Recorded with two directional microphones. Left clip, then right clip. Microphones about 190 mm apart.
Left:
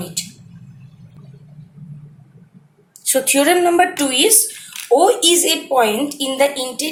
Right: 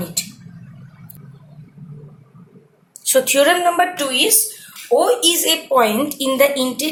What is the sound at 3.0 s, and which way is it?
Speech, 20° left (ahead or behind).